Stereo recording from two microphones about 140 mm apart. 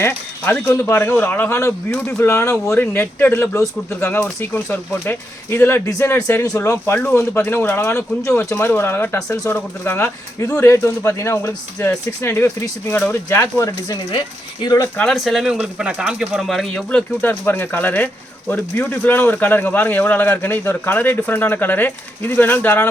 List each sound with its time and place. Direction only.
0.7 s speech: 20° left (ahead or behind)
14.9 s speech: centre (ahead or behind)